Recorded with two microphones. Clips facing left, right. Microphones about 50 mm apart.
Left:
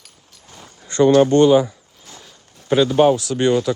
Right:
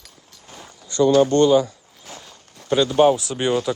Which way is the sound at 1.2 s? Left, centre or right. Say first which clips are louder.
Left 3 dB; centre.